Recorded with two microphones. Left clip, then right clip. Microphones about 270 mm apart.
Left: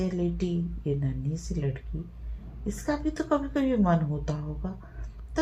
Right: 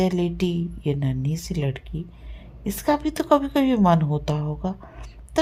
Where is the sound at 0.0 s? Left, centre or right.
Right.